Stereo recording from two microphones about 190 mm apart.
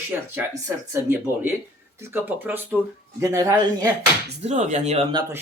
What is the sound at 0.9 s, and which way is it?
Speech, 10° right (ahead or behind).